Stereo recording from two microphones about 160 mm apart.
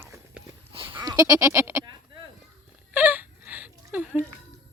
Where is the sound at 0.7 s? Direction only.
35° right (ahead or behind).